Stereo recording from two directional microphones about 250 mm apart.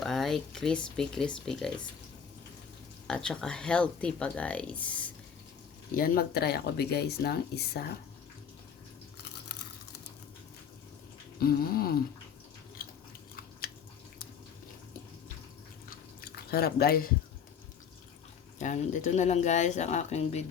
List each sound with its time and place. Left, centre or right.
0.0 s speech: centre
3.1 s speech: centre
6.0 s speech: left
11.3 s speech: left
15.9 s drip: left
18.6 s speech: left